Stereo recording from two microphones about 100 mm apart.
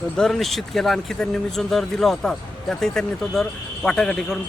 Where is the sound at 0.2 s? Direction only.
5° left (ahead or behind).